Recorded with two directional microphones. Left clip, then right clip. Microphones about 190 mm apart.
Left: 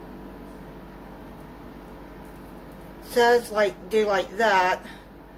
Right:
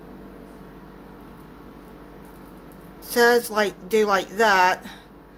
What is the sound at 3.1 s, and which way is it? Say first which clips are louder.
A woman's voice: right 1 dB; 55° right (ahead or behind).